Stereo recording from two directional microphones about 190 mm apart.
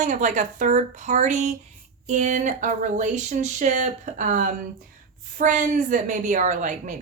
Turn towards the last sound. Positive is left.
turn(degrees=-40)  # may be behind; listen again after turning